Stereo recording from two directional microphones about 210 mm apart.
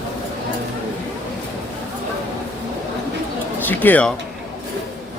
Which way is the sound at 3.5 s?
10° left (ahead or behind).